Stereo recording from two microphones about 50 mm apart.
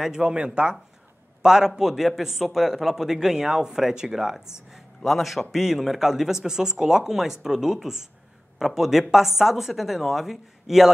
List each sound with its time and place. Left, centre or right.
0.0 s a man's voice: centre